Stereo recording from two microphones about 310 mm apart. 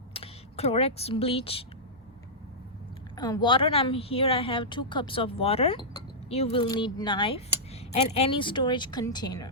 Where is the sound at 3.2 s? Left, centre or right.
Centre.